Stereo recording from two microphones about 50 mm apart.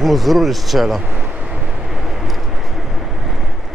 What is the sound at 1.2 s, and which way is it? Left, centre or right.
Vehicle, right.